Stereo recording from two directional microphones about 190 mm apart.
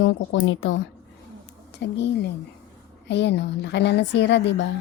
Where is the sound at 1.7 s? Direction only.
65° left (ahead or behind).